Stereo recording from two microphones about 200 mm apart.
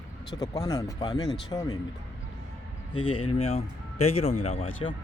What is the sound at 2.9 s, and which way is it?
Speech, 25° left (ahead or behind).